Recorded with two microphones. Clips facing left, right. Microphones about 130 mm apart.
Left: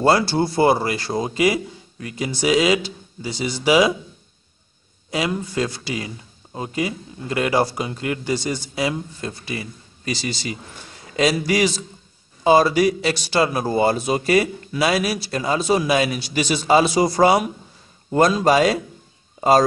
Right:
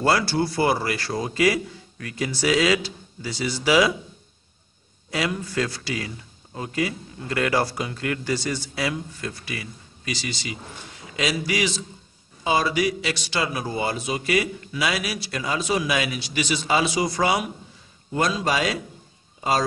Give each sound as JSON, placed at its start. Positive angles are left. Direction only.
{"t": 0.0, "sound": "a man's voice", "side_deg": 25}
{"t": 5.1, "sound": "a man's voice", "side_deg": 20}